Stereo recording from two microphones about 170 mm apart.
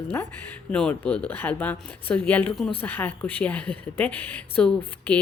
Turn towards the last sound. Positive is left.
turn(degrees=10)  # may be behind; listen again after turning